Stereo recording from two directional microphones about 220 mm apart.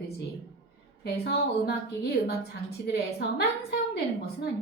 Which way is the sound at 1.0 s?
50° left (ahead or behind).